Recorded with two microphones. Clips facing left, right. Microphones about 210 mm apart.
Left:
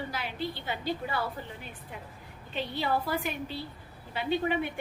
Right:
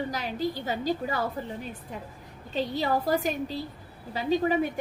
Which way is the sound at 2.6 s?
40° right (ahead or behind).